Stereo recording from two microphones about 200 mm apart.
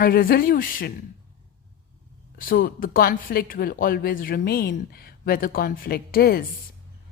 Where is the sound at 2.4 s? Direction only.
45° left (ahead or behind).